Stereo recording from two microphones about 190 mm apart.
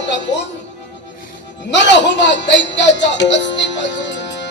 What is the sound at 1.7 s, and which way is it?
A man's voice, 70° left (ahead or behind).